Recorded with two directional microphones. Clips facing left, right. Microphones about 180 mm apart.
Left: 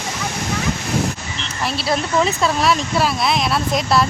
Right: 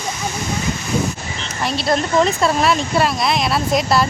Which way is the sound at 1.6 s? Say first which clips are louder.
Right 2 dB; centre (ahead or behind).